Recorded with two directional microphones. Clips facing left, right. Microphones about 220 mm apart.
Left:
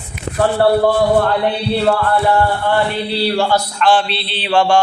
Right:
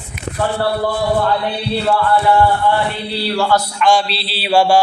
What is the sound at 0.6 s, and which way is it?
Speech, 65° left (ahead or behind).